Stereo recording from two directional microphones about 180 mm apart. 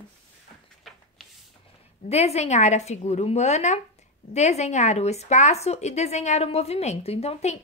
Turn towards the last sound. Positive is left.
turn(degrees=35)  # may be behind; listen again after turning